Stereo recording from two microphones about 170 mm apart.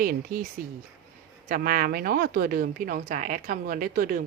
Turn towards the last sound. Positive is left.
turn(degrees=-55)  # may be behind; listen again after turning